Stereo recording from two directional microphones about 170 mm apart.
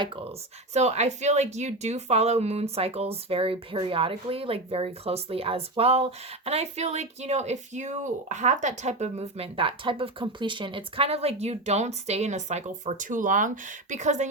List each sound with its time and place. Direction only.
0.7 s speech: 40° right (ahead or behind)